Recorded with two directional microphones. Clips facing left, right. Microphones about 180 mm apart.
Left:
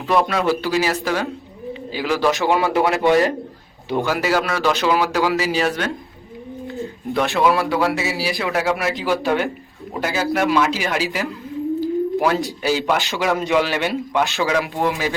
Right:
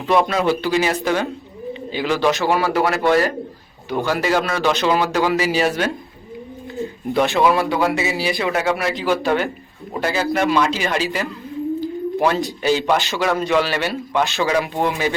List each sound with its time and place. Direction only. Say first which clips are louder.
0.1 s speech: right 1 dB; centre (ahead or behind)
2.3 s a man's voice: even; 20° left (ahead or behind)
4.1 s a man's voice: right 2 dB; 5° left (ahead or behind)
11.8 s a sound: left 2 dB; 5° left (ahead or behind)
12.6 s a man's voice: right 3 dB; 5° left (ahead or behind)
14.4 s speech: right 1 dB; centre (ahead or behind)